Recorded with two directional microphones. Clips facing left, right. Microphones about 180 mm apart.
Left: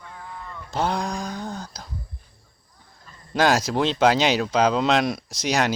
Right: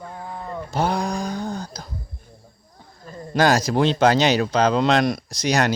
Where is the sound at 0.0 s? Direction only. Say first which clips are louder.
Right 6 dB; 40° right (ahead or behind).